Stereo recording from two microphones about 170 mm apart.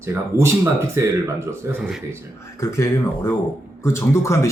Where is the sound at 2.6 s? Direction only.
15° left (ahead or behind).